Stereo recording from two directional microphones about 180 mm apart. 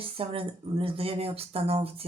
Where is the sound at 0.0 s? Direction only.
30° right (ahead or behind).